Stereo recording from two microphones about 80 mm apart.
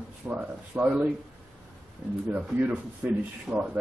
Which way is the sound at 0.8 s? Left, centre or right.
Centre.